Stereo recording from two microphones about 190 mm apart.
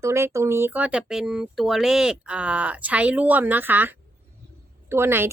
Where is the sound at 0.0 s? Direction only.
15° right (ahead or behind).